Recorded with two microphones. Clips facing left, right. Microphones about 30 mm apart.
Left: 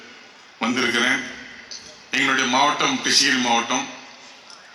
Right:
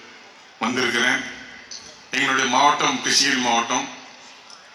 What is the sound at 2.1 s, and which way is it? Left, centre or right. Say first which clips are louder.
Speech: left 1 dB; left.